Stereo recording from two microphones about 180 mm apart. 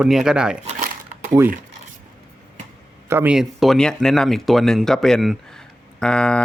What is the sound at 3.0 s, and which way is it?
A man's voice, 10° right (ahead or behind).